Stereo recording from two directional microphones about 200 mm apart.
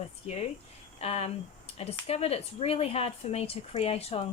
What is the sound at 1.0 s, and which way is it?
Speech, 30° left (ahead or behind).